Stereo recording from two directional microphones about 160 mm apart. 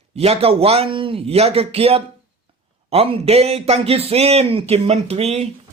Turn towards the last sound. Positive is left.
turn(degrees=-40)  # may be behind; listen again after turning